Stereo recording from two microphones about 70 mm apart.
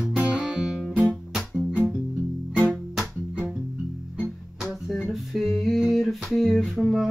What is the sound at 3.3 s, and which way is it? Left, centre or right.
Music, centre.